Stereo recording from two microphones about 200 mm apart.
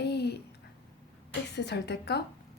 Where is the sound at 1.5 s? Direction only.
55° left (ahead or behind).